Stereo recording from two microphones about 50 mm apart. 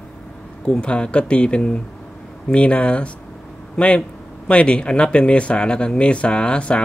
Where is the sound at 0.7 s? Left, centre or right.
Left.